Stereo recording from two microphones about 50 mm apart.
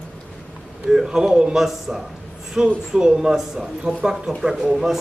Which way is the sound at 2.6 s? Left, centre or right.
Centre.